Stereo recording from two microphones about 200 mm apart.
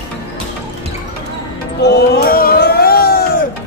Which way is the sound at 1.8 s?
55° left (ahead or behind).